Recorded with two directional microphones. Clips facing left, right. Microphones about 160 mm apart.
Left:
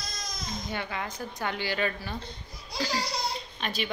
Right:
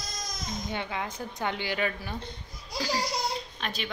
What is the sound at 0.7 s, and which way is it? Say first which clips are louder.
A woman's voice: right 1 dB; 15° right (ahead or behind).